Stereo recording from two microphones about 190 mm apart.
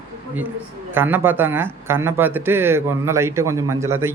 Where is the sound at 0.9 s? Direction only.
10° right (ahead or behind).